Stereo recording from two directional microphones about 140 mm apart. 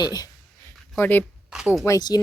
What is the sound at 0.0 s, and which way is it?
Speech, 30° left (ahead or behind).